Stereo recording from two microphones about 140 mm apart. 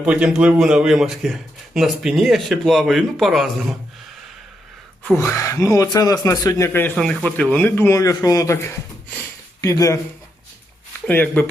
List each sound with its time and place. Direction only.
0.0 s a man's voice: 5° right (ahead or behind)
5.1 s speech: 20° left (ahead or behind)
6.9 s speech: 5° left (ahead or behind); by 10.0 s 20° left (ahead or behind)
11.0 s speech: 15° left (ahead or behind)